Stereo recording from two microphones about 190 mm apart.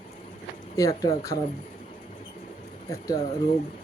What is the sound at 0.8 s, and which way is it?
Speech, 20° left (ahead or behind).